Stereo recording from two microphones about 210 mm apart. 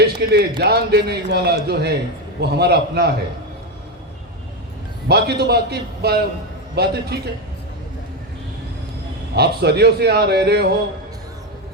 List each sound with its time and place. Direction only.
0.0 s a man's voice: 50° right (ahead or behind)
5.0 s speech: 50° right (ahead or behind)
9.3 s speech: 50° right (ahead or behind)